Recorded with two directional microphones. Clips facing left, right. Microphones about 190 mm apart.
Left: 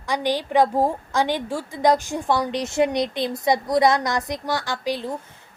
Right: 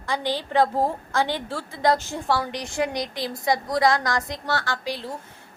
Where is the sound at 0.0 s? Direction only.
15° left (ahead or behind).